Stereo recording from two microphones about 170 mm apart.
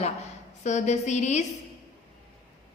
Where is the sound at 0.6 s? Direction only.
45° left (ahead or behind).